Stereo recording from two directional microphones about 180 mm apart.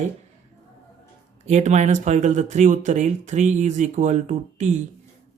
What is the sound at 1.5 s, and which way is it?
A woman's voice, 40° right (ahead or behind).